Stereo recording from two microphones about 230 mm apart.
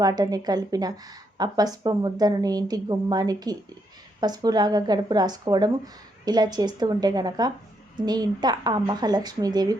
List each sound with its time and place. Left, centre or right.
0.0 s a woman's voice: centre